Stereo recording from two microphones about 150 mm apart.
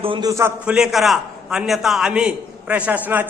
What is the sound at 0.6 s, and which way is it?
A man's voice, 5° right (ahead or behind).